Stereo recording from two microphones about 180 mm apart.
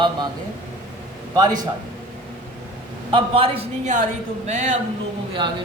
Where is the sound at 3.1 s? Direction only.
30° right (ahead or behind).